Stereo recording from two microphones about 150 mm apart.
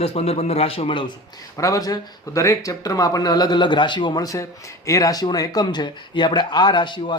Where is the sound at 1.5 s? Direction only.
20° left (ahead or behind).